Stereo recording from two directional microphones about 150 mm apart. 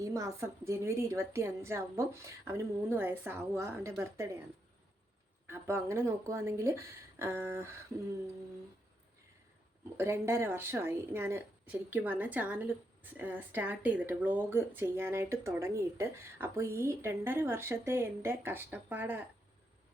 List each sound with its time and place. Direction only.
0.0 s a woman's voice: 20° right (ahead or behind)
5.5 s a woman's voice: 15° right (ahead or behind)
10.0 s a woman's voice: 15° right (ahead or behind)